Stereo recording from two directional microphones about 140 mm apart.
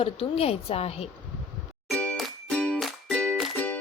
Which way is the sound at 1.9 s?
5° left (ahead or behind).